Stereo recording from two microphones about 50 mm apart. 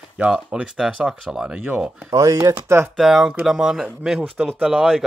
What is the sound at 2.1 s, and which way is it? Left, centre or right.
Speech, right.